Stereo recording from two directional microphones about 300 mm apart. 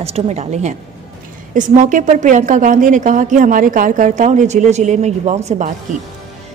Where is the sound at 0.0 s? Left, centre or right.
Right.